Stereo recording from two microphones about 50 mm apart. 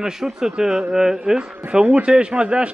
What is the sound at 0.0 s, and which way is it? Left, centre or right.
Speech, centre.